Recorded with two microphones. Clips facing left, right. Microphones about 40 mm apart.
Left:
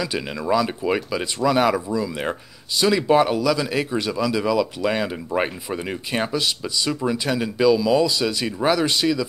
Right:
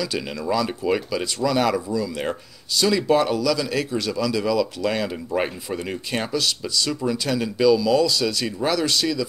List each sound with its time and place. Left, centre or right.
0.0 s speech: centre